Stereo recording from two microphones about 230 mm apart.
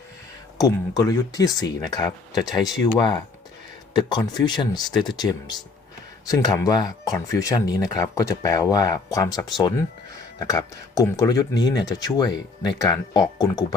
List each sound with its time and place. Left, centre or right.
0.6 s speech: centre